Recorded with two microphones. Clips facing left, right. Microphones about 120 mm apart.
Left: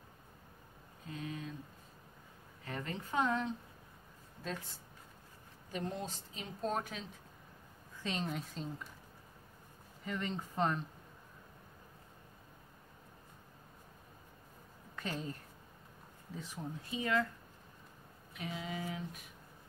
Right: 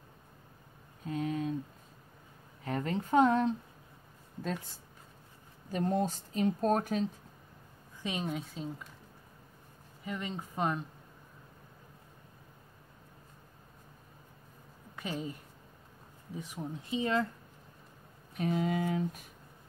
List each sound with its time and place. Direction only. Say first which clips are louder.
1.1 s a sound: right 10 dB; 50° right (ahead or behind)
2.6 s a woman's voice: right 8 dB; 40° right (ahead or behind)
5.7 s a woman's voice: right 9 dB; 40° right (ahead or behind)
8.0 s speech: right 3 dB; 10° right (ahead or behind)
10.0 s speech: right 1 dB; 10° right (ahead or behind)
15.0 s speech: right 3 dB; 10° right (ahead or behind)
16.3 s speech: right 4 dB; 15° right (ahead or behind)
18.3 s a woman's voice: right 11 dB; 45° right (ahead or behind)